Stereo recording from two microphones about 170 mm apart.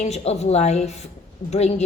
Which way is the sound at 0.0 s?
40° left (ahead or behind).